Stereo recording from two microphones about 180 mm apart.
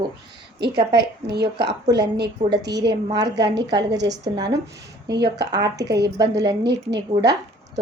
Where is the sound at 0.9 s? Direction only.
65° right (ahead or behind).